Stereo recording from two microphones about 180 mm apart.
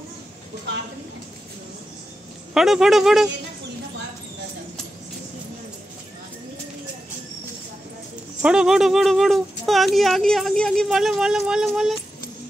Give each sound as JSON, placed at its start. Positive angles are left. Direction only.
{"t": 2.5, "sound": "speech", "side_deg": 0}
{"t": 8.4, "sound": "speech", "side_deg": -5}